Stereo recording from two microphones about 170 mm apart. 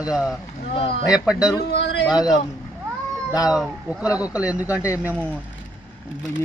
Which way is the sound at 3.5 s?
5° right (ahead or behind).